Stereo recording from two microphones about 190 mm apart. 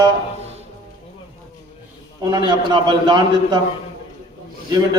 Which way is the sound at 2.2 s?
25° right (ahead or behind).